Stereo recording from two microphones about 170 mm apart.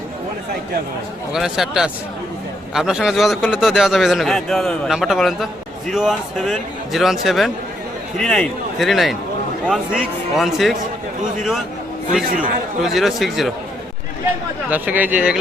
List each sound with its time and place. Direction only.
1.3 s a man's voice: 5° right (ahead or behind)
12.8 s a man's voice: centre (ahead or behind)
14.7 s speech: 10° right (ahead or behind)